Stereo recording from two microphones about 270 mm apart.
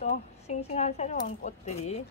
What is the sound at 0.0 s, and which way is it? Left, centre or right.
Speech, left.